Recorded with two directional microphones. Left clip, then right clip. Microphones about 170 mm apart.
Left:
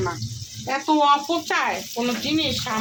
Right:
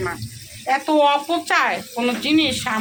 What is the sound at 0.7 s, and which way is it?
Speech, 15° right (ahead or behind).